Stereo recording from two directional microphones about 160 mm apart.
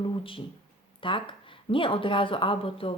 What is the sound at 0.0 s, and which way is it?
Speech, 30° left (ahead or behind).